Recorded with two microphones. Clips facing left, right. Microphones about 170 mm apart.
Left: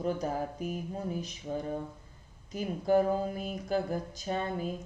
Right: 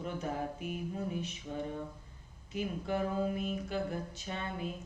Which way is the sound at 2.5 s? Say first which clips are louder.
Left 8 dB; 40° left (ahead or behind).